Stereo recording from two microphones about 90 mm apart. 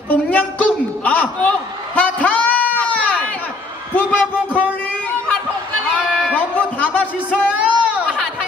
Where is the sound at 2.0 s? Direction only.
15° left (ahead or behind).